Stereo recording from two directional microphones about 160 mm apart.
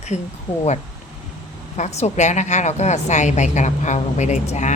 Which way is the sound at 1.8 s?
45° left (ahead or behind).